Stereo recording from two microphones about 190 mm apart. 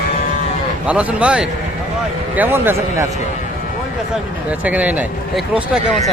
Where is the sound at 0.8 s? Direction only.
5° right (ahead or behind).